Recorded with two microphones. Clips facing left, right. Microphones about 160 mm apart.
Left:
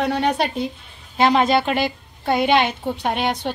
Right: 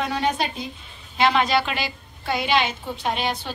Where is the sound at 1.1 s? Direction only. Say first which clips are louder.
Left 3 dB; 45° left (ahead or behind).